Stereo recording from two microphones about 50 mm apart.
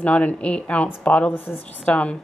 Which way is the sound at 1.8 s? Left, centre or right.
Left.